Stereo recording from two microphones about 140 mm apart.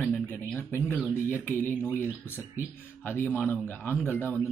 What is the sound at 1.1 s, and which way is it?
Speech, 15° left (ahead or behind).